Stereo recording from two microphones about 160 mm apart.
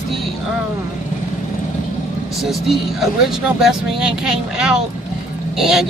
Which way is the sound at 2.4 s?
Centre (ahead or behind).